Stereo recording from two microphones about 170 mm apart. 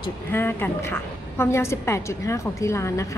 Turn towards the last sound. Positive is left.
turn(degrees=15)  # may be behind; listen again after turning